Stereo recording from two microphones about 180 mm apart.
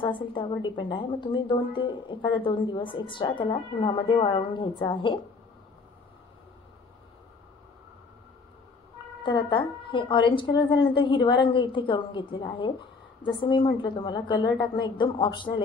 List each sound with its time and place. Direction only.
0.0 s a woman's voice: 30° left (ahead or behind)
9.2 s a woman's voice: 25° left (ahead or behind)